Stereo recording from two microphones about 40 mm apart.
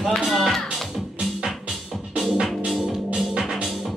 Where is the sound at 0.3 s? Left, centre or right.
Centre.